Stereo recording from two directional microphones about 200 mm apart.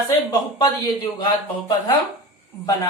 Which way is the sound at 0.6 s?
20° left (ahead or behind).